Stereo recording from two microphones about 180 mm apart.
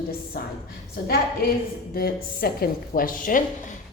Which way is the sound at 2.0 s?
55° left (ahead or behind).